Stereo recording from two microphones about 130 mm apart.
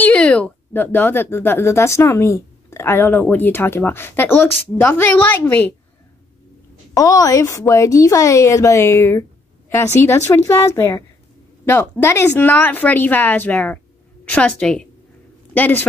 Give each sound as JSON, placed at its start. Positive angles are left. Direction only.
{"t": 0.0, "sound": "speech", "side_deg": 10}
{"t": 6.9, "sound": "a woman's voice", "side_deg": 25}